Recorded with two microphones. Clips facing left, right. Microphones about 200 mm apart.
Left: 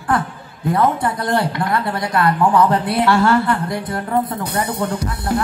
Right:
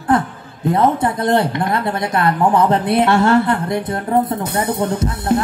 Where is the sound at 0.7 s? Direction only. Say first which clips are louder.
Right 2 dB; 20° right (ahead or behind).